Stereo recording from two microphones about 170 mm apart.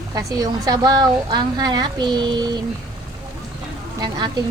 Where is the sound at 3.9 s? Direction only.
25° right (ahead or behind).